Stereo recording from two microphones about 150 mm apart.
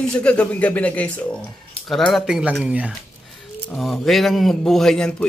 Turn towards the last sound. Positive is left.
turn(degrees=5)  # may be behind; listen again after turning